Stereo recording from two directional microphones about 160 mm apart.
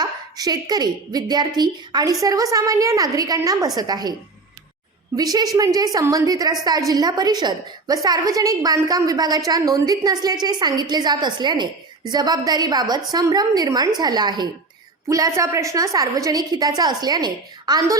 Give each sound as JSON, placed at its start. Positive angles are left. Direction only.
{"t": 0.0, "sound": "a woman's voice", "side_deg": -25}
{"t": 5.1, "sound": "a woman's voice", "side_deg": -25}